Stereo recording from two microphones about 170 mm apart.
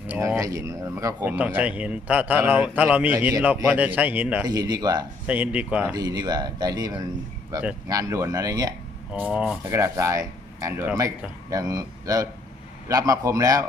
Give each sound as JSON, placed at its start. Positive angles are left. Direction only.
{"t": 0.1, "sound": "speech", "side_deg": -15}
{"t": 4.4, "sound": "speech", "side_deg": -20}
{"t": 5.2, "sound": "speech", "side_deg": -10}
{"t": 5.9, "sound": "speech", "side_deg": -20}
{"t": 9.3, "sound": "speech", "side_deg": -10}